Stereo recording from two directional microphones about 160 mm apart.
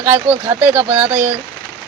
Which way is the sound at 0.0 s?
10° right (ahead or behind).